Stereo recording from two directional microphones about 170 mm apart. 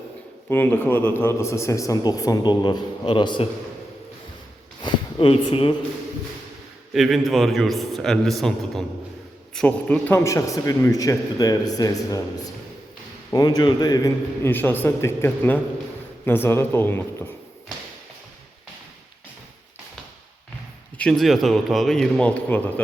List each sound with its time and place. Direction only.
0.4 s a man's voice: 10° left (ahead or behind); by 3.4 s 30° left (ahead or behind)
4.8 s a sound: 30° left (ahead or behind)
6.9 s a man's voice: centre (ahead or behind); by 12.2 s 20° left (ahead or behind)
13.3 s a man's voice: 20° left (ahead or behind)
21.0 s a man's voice: centre (ahead or behind)